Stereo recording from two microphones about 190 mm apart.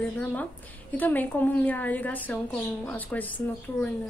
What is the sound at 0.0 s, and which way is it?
A woman's voice, 10° left (ahead or behind).